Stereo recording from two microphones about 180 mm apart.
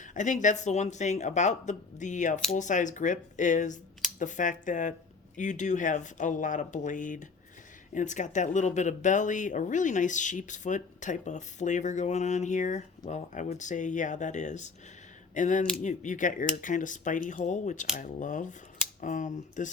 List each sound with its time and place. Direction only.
0.0 s speech: 45° left (ahead or behind)